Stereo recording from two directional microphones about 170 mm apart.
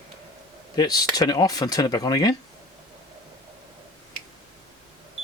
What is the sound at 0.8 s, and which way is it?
Speech, 25° left (ahead or behind).